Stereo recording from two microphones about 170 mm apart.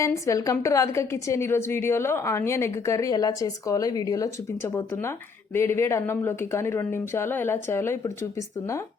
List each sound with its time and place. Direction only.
0.0 s a woman's voice: 20° left (ahead or behind)